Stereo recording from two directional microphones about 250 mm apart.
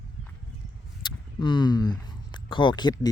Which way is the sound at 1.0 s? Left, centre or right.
Centre.